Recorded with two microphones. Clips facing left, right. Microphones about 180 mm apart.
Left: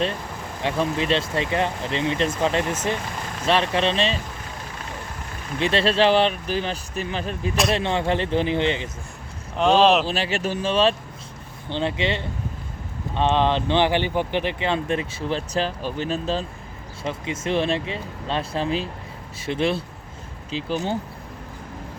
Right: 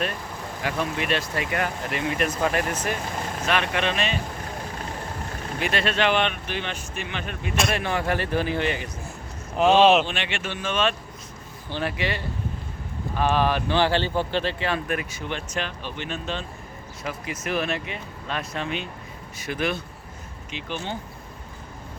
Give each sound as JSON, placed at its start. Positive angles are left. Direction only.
{"t": 0.6, "sound": "speech", "side_deg": 30}
{"t": 5.5, "sound": "speech", "side_deg": 30}
{"t": 7.7, "sound": "speech", "side_deg": 25}
{"t": 9.6, "sound": "speech", "side_deg": -5}
{"t": 10.1, "sound": "speech", "side_deg": 35}